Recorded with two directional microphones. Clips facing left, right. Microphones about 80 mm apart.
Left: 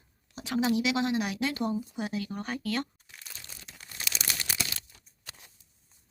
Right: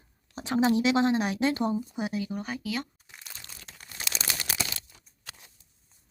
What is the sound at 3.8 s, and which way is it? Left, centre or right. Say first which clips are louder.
Crumpling: right 1 dB; centre.